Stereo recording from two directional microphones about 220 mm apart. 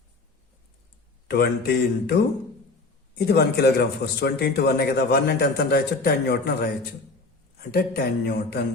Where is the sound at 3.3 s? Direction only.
45° left (ahead or behind).